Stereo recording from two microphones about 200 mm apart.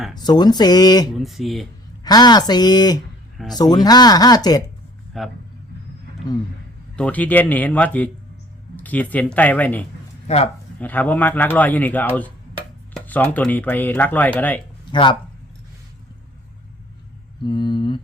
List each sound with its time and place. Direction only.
0.2 s speech: 20° left (ahead or behind)
1.1 s speech: centre (ahead or behind)
2.0 s speech: 20° left (ahead or behind)
5.1 s speech: centre (ahead or behind)
6.9 s speech: 5° left (ahead or behind)
10.2 s speech: 30° left (ahead or behind)
10.8 s speech: 10° left (ahead or behind)
17.4 s speech: 20° left (ahead or behind)